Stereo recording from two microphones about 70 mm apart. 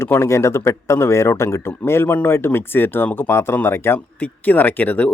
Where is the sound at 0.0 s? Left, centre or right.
Left.